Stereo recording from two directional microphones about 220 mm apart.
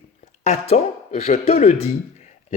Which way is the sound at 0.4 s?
30° left (ahead or behind).